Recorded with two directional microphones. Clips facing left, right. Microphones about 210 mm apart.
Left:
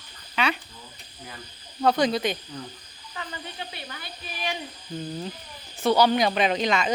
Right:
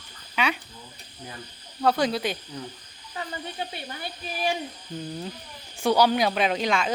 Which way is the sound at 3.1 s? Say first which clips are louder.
Right 3 dB; 30° right (ahead or behind).